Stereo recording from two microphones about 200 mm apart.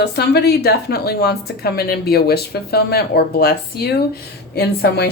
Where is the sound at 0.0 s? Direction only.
55° left (ahead or behind).